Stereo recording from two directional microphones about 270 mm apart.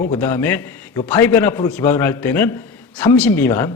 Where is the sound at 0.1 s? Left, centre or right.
Centre.